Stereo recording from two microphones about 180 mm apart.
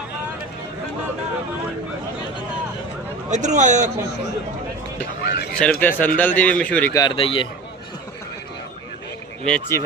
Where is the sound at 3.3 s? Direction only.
40° right (ahead or behind).